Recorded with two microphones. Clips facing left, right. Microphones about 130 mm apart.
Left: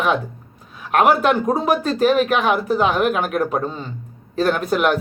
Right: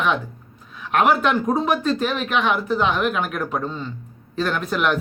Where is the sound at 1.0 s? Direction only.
40° left (ahead or behind).